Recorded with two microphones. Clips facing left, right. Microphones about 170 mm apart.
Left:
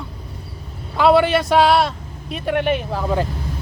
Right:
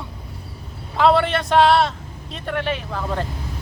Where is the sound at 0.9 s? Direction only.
5° left (ahead or behind).